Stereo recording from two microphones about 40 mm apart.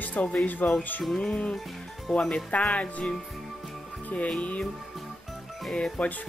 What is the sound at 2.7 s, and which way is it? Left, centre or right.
Music, left.